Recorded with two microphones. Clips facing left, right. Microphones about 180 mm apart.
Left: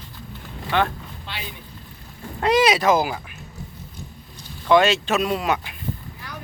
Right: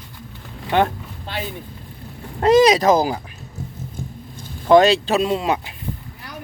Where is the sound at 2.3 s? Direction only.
40° right (ahead or behind).